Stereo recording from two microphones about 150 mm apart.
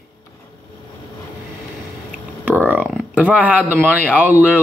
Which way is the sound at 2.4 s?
10° right (ahead or behind).